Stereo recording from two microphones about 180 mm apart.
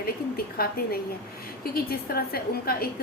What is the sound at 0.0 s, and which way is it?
A woman's voice, 55° left (ahead or behind).